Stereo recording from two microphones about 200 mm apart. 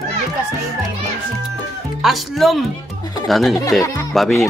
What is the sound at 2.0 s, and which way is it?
Speech, centre (ahead or behind).